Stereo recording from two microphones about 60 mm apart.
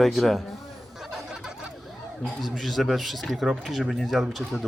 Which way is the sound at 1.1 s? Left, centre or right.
Centre.